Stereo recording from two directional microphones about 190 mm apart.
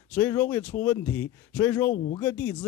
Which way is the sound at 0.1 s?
10° left (ahead or behind).